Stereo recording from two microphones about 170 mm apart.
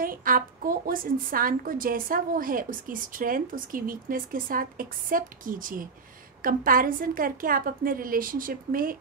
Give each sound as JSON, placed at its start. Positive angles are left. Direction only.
{"t": 0.0, "sound": "a woman's voice", "side_deg": -55}